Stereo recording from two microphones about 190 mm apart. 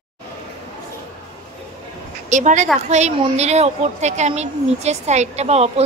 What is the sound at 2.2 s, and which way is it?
A woman's voice, 40° right (ahead or behind).